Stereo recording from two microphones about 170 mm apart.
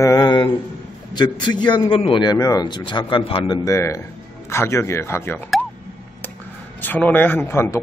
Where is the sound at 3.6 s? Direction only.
15° left (ahead or behind).